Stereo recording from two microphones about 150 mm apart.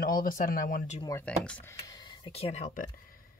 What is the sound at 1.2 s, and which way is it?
Speech, 10° left (ahead or behind).